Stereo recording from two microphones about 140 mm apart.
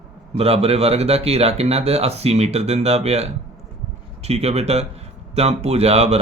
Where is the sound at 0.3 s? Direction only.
45° right (ahead or behind).